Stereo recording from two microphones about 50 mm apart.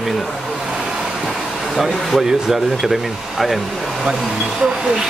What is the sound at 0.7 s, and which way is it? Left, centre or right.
Vehicle, centre.